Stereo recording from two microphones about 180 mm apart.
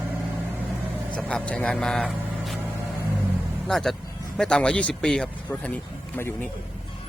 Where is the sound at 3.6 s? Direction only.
Centre (ahead or behind).